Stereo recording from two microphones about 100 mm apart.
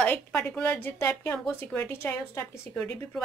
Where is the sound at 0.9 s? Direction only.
25° left (ahead or behind).